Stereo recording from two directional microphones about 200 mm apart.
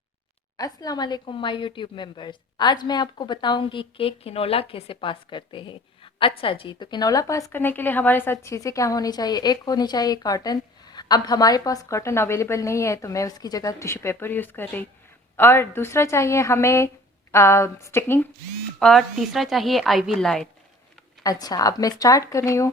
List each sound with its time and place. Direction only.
0.5 s a woman's voice: 20° left (ahead or behind)
18.8 s a woman's voice: centre (ahead or behind)
21.2 s a woman's voice: 20° left (ahead or behind)